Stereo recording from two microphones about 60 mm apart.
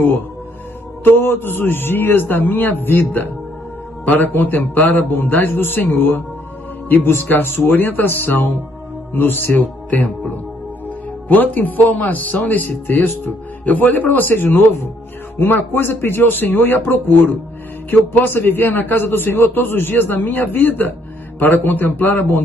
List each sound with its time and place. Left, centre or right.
1.0 s a man's voice: left